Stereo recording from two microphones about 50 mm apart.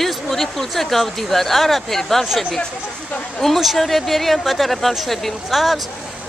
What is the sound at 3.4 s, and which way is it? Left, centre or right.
Speech, centre.